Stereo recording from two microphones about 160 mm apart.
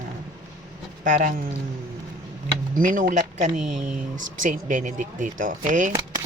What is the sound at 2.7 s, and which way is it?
A man's voice, 60° right (ahead or behind).